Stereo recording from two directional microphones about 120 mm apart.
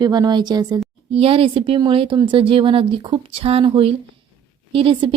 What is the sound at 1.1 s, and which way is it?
A woman's voice, 50° right (ahead or behind).